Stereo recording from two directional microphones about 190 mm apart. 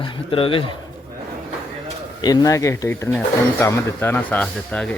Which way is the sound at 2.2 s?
20° left (ahead or behind).